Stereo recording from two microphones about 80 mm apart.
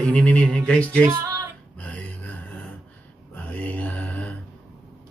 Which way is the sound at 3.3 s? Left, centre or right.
Left.